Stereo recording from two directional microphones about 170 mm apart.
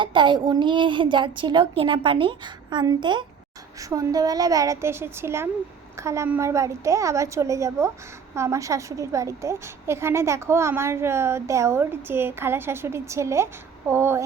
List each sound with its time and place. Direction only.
0.0 s a woman's voice: 30° right (ahead or behind)